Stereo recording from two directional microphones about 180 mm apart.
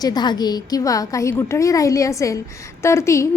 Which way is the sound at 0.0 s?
25° left (ahead or behind).